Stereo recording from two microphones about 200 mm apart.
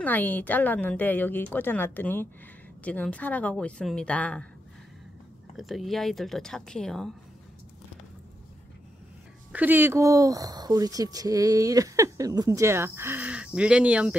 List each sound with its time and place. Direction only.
0.0 s speech: 10° left (ahead or behind)
5.6 s speech: centre (ahead or behind)
9.5 s speech: 10° right (ahead or behind)